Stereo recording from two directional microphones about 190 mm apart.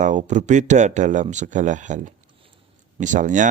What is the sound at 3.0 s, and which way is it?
Speech, 40° right (ahead or behind).